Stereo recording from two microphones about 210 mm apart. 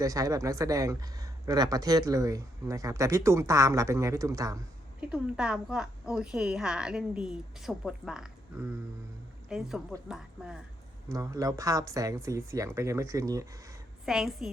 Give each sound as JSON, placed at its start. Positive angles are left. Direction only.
{"t": 0.0, "sound": "speech", "side_deg": -15}
{"t": 4.9, "sound": "a woman's voice", "side_deg": -5}
{"t": 9.5, "sound": "a woman's voice", "side_deg": -5}
{"t": 11.1, "sound": "speech", "side_deg": -15}
{"t": 14.0, "sound": "a woman's voice", "side_deg": 0}